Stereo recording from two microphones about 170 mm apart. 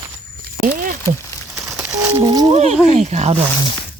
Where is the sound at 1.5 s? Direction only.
15° right (ahead or behind).